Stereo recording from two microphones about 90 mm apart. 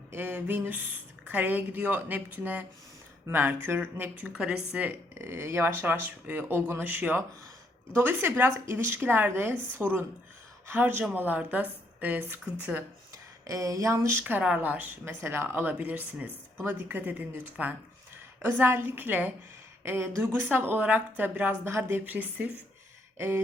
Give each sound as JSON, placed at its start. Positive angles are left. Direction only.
{"t": 0.1, "sound": "a woman's voice", "side_deg": -20}
{"t": 5.1, "sound": "a woman's voice", "side_deg": -30}
{"t": 13.5, "sound": "speech", "side_deg": -40}
{"t": 23.1, "sound": "a sound", "side_deg": -25}